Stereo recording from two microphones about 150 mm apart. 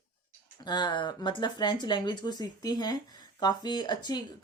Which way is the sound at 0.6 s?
30° left (ahead or behind).